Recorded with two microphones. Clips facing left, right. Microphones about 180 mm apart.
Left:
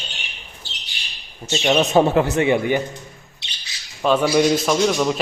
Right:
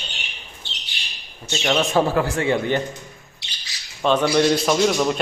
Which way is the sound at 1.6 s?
20° left (ahead or behind).